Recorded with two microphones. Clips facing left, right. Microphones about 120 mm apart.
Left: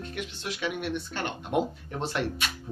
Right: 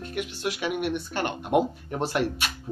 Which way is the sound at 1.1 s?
55° right (ahead or behind).